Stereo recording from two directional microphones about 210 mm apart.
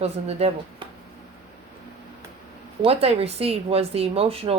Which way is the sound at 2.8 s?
30° right (ahead or behind).